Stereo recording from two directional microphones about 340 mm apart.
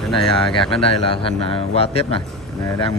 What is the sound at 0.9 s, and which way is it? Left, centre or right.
A man's voice, centre.